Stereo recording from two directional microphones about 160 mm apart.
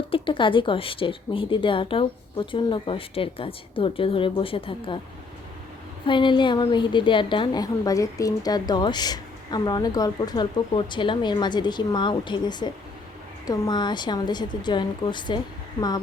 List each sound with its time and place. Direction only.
0.1 s a woman's voice: 30° left (ahead or behind)
6.1 s a woman's voice: 30° left (ahead or behind)